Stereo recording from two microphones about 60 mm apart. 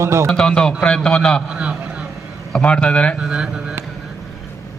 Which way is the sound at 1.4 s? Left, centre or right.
Centre.